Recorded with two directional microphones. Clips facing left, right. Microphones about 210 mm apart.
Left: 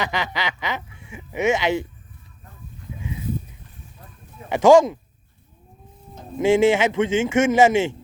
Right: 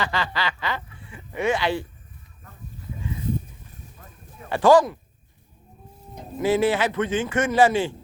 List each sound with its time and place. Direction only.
0.0 s speech: 20° left (ahead or behind)
4.4 s speech: 20° left (ahead or behind)
6.4 s speech: 25° left (ahead or behind)